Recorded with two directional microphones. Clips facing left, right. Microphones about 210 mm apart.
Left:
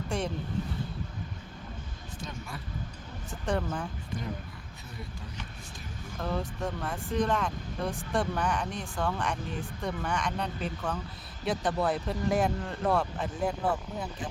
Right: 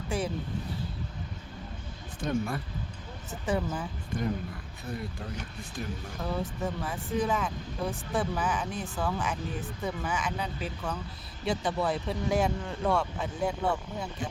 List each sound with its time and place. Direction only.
0.1 s speech: 5° right (ahead or behind)
2.2 s speech: 55° right (ahead or behind)
3.2 s speech: 5° right (ahead or behind)
6.1 s speech: centre (ahead or behind)